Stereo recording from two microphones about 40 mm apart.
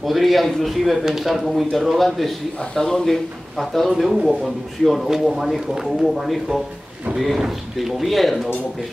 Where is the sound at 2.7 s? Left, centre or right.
Centre.